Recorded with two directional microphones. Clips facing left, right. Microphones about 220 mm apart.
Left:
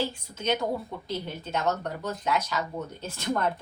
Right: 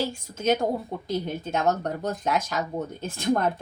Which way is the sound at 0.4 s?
45° right (ahead or behind).